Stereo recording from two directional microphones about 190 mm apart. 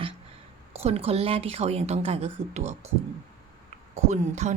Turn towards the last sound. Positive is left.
turn(degrees=-40)  # may be behind; listen again after turning